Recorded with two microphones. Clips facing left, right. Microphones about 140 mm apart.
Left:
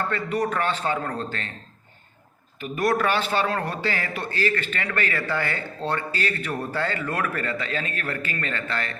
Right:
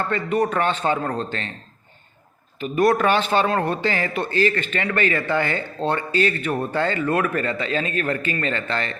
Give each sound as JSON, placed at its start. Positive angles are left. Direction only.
{"t": 0.1, "sound": "a man's voice", "side_deg": -20}
{"t": 2.6, "sound": "a man's voice", "side_deg": -25}